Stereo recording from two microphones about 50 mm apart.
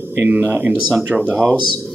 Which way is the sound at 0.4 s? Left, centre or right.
Right.